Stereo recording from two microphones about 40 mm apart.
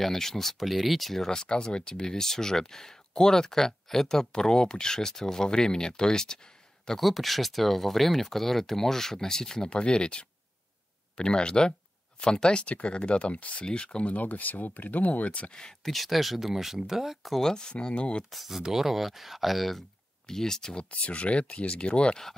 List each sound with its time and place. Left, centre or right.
0.0 s speech: centre
1.3 s speech: centre
7.0 s speech: centre; by 13.7 s left
13.7 s speech: left
14.0 s speech: left
15.8 s speech: centre
17.4 s speech: centre
18.3 s speech: centre
20.2 s speech: centre
20.9 s speech: left